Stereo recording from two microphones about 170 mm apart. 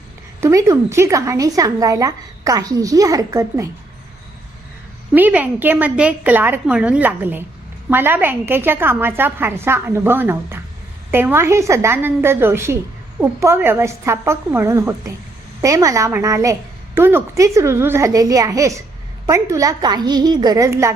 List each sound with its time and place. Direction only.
0.4 s a woman's voice: 15° right (ahead or behind)
5.1 s a woman's voice: 10° right (ahead or behind)